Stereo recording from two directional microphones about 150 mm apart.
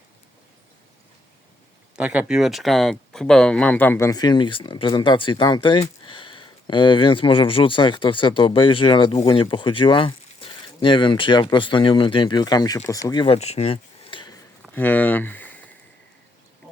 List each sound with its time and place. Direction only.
2.0 s speech: 5° right (ahead or behind); by 13.2 s 25° left (ahead or behind)
13.2 s a sound: 45° left (ahead or behind)
14.7 s speech: 10° left (ahead or behind)